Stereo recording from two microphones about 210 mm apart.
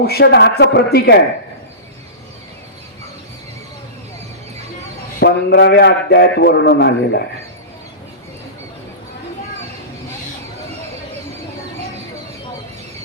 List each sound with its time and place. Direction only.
0.0 s a man's voice: 50° left (ahead or behind)
5.2 s a man's voice: 50° left (ahead or behind)